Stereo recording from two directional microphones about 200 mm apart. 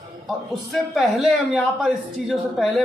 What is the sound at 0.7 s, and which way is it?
Speech, centre (ahead or behind).